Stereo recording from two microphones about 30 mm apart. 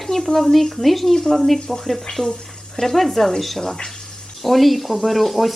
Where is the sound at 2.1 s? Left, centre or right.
Left.